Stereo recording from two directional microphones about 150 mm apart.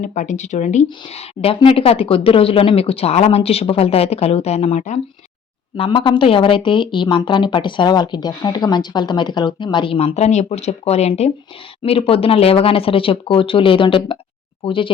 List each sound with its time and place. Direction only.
0.0 s speech: 50° left (ahead or behind)
5.7 s speech: 35° left (ahead or behind)